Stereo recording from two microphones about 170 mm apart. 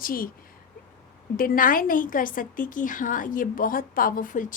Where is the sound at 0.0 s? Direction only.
55° left (ahead or behind).